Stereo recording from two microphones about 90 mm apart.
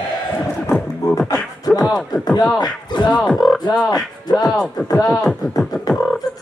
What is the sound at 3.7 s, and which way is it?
Speech, 45° left (ahead or behind).